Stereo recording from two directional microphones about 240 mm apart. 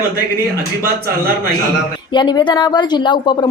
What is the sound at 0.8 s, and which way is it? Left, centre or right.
Speech, right.